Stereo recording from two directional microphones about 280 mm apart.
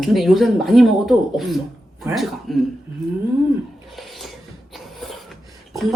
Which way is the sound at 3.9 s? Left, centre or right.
Centre.